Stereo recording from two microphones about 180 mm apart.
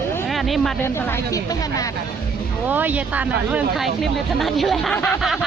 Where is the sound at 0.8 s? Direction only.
10° left (ahead or behind).